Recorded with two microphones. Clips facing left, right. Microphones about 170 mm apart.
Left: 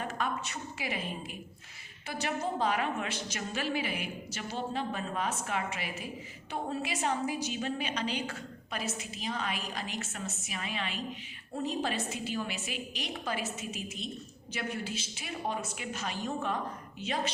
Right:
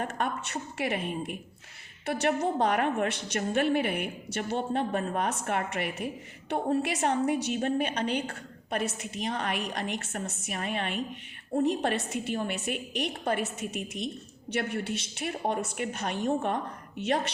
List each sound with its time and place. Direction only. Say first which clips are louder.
0.0 s a woman's voice: right 3 dB; 60° right (ahead or behind)